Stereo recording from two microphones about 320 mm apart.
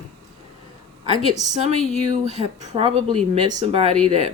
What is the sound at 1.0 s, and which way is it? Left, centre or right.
Speech, centre.